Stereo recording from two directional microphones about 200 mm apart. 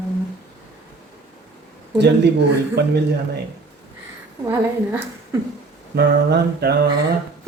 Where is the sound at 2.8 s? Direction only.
55° right (ahead or behind).